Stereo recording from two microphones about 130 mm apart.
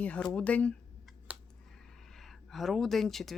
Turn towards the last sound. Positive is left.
turn(degrees=0)  # may be behind; listen again after turning